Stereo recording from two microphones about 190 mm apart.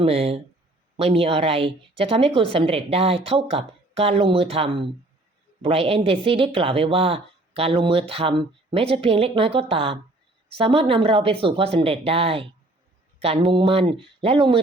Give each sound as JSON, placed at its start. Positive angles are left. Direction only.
{"t": 0.0, "sound": "a woman's voice", "side_deg": -30}